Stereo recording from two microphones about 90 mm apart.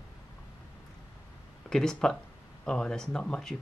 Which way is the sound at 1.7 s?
5° left (ahead or behind).